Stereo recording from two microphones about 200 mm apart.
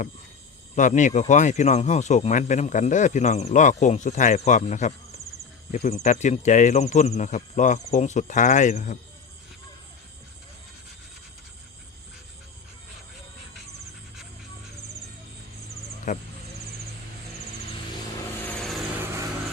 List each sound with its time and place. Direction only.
0.8 s speech: 40° left (ahead or behind)
16.1 s speech: 40° left (ahead or behind)
18.4 s vehicle: 5° left (ahead or behind)
18.9 s vehicle: 15° right (ahead or behind)